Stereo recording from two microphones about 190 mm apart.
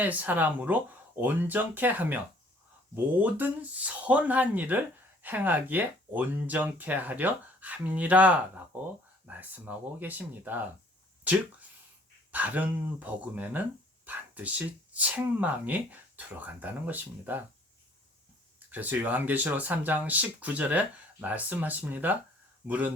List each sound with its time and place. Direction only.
0.0 s speech: 10° right (ahead or behind)
12.3 s speech: 10° right (ahead or behind)
18.7 s speech: 10° right (ahead or behind)